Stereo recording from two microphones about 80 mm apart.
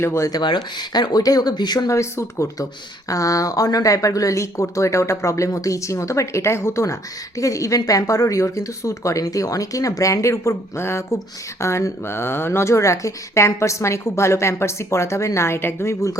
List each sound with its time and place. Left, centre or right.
0.0 s speech: left
0.3 s speech: left
1.9 s speech: left